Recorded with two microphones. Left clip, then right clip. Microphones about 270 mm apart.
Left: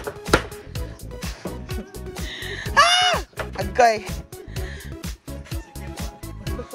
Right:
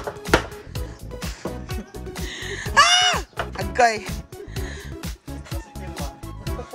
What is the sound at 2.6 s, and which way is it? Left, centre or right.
Music, centre.